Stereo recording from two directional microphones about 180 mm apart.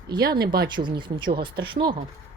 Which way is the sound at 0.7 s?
25° right (ahead or behind).